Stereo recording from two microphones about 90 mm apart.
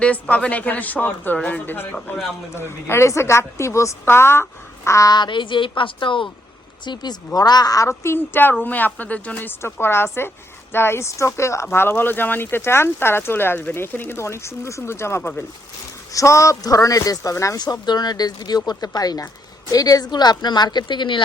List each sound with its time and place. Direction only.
0.0 s a woman's voice: 15° left (ahead or behind); by 5.1 s 35° left (ahead or behind)
5.1 s a woman's voice: 60° left (ahead or behind)
6.8 s speech: 55° left (ahead or behind)
7.9 s speech: 30° left (ahead or behind)
17.6 s speech: 50° left (ahead or behind)